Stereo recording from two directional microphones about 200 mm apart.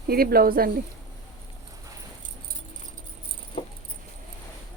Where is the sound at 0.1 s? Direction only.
50° right (ahead or behind).